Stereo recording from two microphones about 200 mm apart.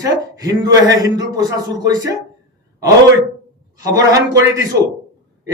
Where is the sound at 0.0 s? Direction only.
15° right (ahead or behind).